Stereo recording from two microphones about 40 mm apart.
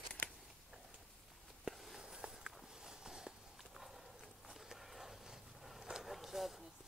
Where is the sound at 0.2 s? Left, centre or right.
Left.